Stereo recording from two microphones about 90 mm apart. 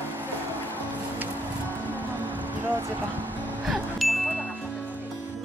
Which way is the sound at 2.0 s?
20° right (ahead or behind).